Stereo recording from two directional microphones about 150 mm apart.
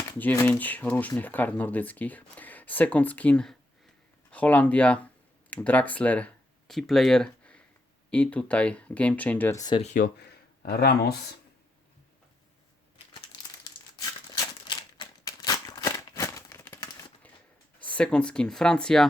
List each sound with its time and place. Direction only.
0.0 s speech: 10° left (ahead or behind)
9.8 s speech: 60° left (ahead or behind); by 11.2 s 90° left
14.7 s typewriter: 30° left (ahead or behind)
17.9 s speech: 5° left (ahead or behind)